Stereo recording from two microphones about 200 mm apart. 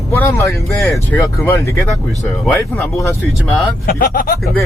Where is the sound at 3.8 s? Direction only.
45° left (ahead or behind).